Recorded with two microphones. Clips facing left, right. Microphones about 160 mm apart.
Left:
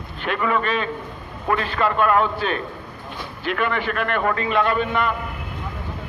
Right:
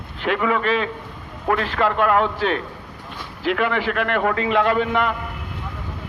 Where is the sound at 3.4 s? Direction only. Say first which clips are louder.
Right 3 dB; 90° right.